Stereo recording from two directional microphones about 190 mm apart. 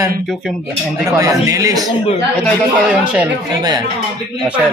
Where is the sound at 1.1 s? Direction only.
20° right (ahead or behind).